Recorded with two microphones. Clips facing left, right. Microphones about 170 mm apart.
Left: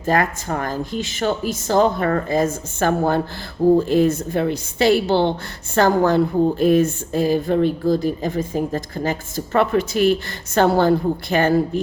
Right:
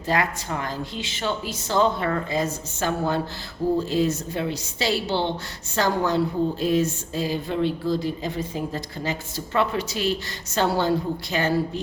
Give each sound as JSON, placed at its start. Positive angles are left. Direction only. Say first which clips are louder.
{"t": 0.0, "sound": "a woman's voice", "louder": "left 5 dB", "side_deg": 50}